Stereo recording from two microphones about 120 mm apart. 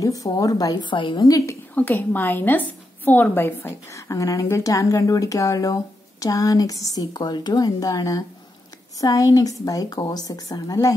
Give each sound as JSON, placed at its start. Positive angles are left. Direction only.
{"t": 0.0, "sound": "a woman's voice", "side_deg": 30}
{"t": 1.2, "sound": "a woman's voice", "side_deg": 25}
{"t": 1.8, "sound": "a woman's voice", "side_deg": 15}